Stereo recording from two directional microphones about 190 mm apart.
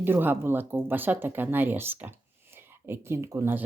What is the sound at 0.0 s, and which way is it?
Speech, 10° right (ahead or behind).